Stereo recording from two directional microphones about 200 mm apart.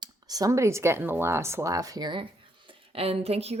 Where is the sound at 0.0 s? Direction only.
20° right (ahead or behind).